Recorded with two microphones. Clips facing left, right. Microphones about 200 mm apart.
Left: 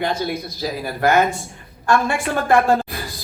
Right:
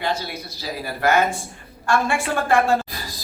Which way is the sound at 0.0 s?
50° left (ahead or behind).